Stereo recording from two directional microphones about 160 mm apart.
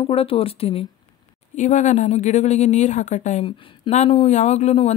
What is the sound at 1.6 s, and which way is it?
Speech, 50° left (ahead or behind).